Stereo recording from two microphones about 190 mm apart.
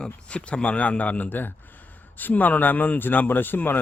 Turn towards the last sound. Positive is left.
turn(degrees=10)  # may be behind; listen again after turning